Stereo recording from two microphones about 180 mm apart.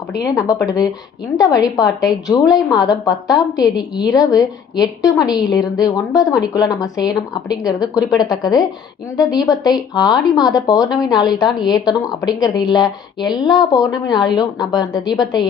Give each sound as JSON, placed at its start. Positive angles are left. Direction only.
{"t": 0.1, "sound": "speech", "side_deg": 20}